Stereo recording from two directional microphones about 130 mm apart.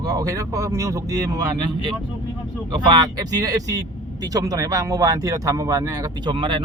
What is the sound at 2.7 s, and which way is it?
Speech, 35° right (ahead or behind).